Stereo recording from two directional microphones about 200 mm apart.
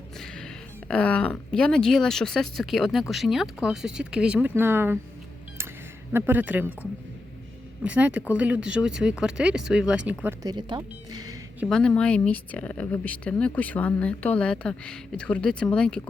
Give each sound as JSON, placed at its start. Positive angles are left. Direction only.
{"t": 0.2, "sound": "speech", "side_deg": 5}
{"t": 6.1, "sound": "speech", "side_deg": -10}
{"t": 7.9, "sound": "speech", "side_deg": -5}
{"t": 10.5, "sound": "speech", "side_deg": -20}
{"t": 11.6, "sound": "speech", "side_deg": 5}